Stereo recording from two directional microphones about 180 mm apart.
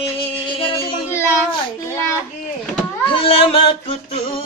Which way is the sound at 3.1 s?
30° left (ahead or behind).